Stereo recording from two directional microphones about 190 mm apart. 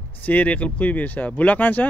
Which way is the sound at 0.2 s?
5° left (ahead or behind).